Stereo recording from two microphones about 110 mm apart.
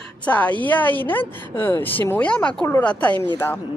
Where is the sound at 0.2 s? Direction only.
15° left (ahead or behind).